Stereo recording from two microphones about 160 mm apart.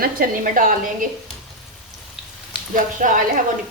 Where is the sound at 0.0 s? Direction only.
60° right (ahead or behind).